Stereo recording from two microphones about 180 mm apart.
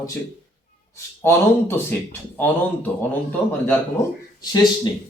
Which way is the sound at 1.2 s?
15° left (ahead or behind).